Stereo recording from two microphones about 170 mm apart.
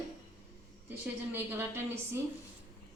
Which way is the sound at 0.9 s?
15° right (ahead or behind).